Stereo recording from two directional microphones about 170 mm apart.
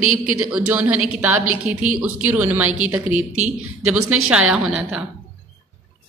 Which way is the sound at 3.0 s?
45° right (ahead or behind).